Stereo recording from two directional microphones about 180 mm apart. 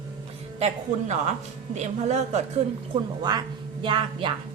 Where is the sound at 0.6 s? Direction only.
40° right (ahead or behind).